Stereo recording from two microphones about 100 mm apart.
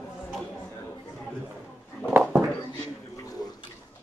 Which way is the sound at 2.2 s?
5° right (ahead or behind).